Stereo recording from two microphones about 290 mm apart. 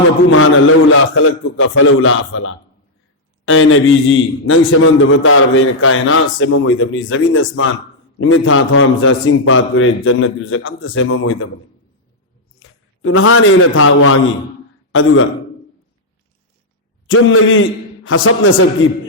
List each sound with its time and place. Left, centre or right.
0.3 s a man's voice: left
12.5 s a man's voice: left
17.1 s a man's voice: left